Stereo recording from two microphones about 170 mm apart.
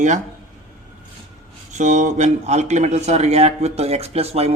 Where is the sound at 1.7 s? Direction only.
45° right (ahead or behind).